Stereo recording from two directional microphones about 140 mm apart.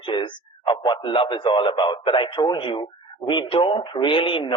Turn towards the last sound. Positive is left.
turn(degrees=35)  # may be behind; listen again after turning